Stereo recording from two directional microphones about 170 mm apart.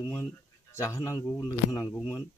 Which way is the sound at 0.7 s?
15° left (ahead or behind).